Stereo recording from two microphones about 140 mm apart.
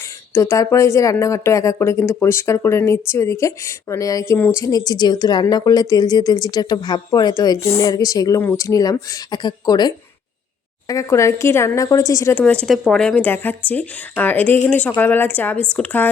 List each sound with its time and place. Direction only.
0.3 s speech: 20° left (ahead or behind)
4.4 s speech: 10° left (ahead or behind)
4.6 s speech: 25° left (ahead or behind)
12.3 s speech: 10° left (ahead or behind)